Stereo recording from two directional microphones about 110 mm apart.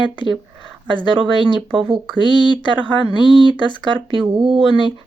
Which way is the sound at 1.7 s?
50° right (ahead or behind).